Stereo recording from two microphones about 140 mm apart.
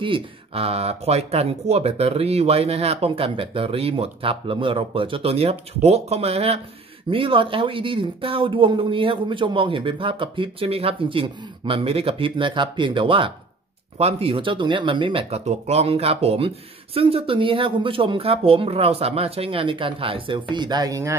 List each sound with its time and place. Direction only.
0.0 s speech: 40° right (ahead or behind); by 21.2 s 25° right (ahead or behind)